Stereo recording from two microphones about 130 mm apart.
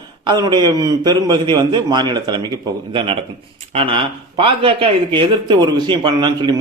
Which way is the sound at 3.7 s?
40° right (ahead or behind).